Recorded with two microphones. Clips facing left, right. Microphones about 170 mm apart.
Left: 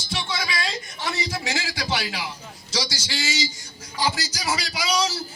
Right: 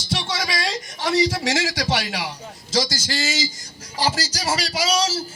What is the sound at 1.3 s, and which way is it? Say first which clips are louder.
Speech: right 6 dB; 75° right (ahead or behind).